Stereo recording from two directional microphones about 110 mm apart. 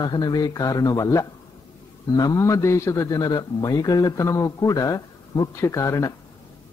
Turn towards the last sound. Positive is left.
turn(degrees=30)  # may be behind; listen again after turning